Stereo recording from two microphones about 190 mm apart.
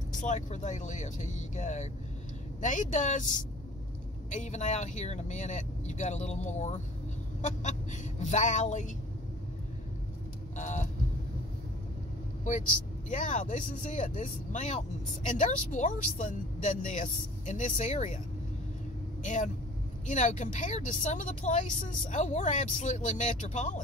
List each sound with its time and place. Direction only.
0.2 s a woman's voice: 40° left (ahead or behind)
4.3 s a woman's voice: 35° left (ahead or behind)
10.5 s a sound: 40° left (ahead or behind)
13.1 s a woman's voice: 40° left (ahead or behind)
19.2 s a woman's voice: 40° left (ahead or behind)